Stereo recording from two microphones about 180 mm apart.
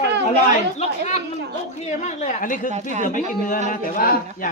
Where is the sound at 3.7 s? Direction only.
50° left (ahead or behind).